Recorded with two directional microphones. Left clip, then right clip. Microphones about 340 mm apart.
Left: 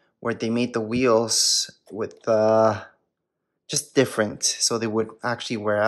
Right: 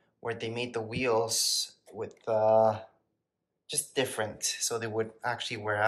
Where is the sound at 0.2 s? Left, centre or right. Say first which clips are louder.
Left 9 dB; centre.